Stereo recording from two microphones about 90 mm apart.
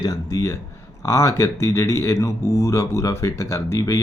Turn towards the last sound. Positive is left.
turn(degrees=35)  # may be behind; listen again after turning